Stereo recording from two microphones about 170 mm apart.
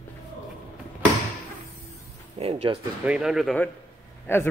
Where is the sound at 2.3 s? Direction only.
35° right (ahead or behind).